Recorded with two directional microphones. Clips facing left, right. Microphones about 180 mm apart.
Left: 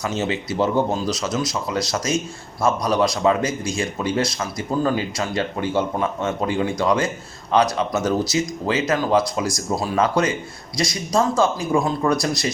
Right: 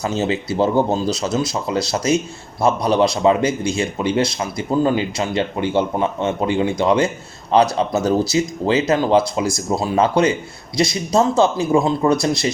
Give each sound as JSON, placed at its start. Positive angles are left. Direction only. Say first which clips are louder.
{"t": 0.0, "sound": "speech", "louder": "right 3 dB", "side_deg": -35}